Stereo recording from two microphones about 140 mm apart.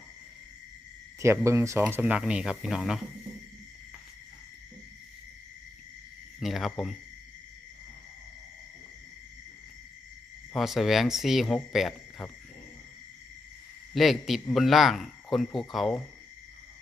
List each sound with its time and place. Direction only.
1.2 s speech: 20° right (ahead or behind)
2.0 s speech: 10° right (ahead or behind)
6.4 s speech: centre (ahead or behind)
10.5 s speech: centre (ahead or behind)
13.9 s speech: centre (ahead or behind)